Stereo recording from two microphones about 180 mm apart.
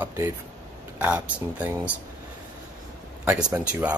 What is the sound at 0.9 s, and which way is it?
Speech, 10° right (ahead or behind).